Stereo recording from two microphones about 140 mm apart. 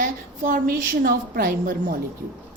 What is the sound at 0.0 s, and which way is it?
A woman's voice, 75° right (ahead or behind).